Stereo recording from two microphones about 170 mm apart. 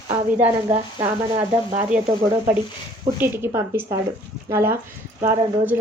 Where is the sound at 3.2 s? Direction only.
15° right (ahead or behind).